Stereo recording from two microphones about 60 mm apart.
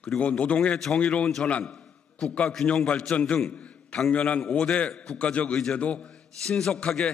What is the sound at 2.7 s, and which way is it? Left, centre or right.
Speech, centre.